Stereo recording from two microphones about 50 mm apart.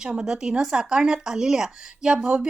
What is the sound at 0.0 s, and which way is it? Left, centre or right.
A woman's voice, centre.